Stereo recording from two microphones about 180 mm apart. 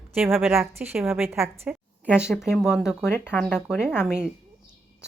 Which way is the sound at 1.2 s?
15° right (ahead or behind).